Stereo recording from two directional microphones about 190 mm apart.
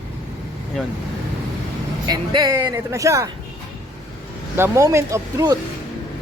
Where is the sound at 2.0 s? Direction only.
20° right (ahead or behind).